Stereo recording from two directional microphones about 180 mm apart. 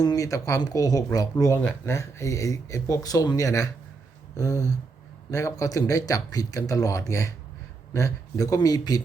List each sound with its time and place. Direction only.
0.0 s speech: 20° left (ahead or behind)